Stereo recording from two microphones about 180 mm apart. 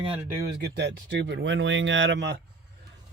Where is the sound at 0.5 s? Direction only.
70° right (ahead or behind).